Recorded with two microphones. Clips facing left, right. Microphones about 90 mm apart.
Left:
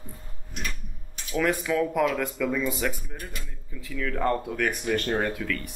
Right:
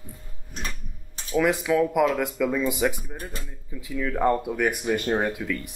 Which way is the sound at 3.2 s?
35° right (ahead or behind).